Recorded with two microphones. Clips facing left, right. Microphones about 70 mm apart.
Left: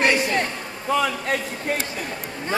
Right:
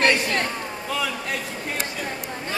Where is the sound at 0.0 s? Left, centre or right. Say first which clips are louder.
Left 1 dB; centre.